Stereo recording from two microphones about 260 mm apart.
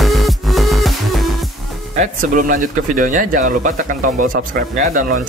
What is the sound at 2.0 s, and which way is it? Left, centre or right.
Speech, right.